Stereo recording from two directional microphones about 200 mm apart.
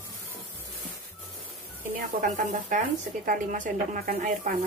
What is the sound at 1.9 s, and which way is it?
Speech, 45° right (ahead or behind).